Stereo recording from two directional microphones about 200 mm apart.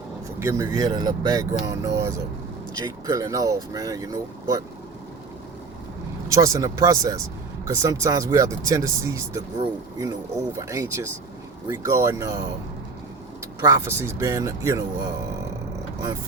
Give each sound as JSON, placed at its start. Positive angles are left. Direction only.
{"t": 0.3, "sound": "speech", "side_deg": -15}
{"t": 6.3, "sound": "speech", "side_deg": -15}
{"t": 13.6, "sound": "speech", "side_deg": -15}